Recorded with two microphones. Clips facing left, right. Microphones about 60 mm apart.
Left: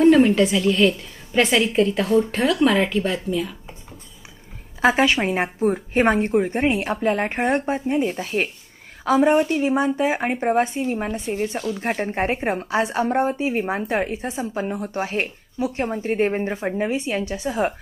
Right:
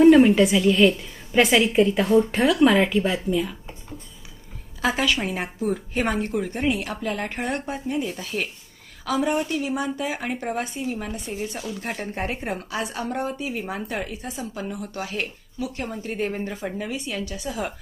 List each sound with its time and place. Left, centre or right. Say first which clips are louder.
0.0 s a woman's voice: right 1 dB; centre
4.8 s speech: left 5 dB; left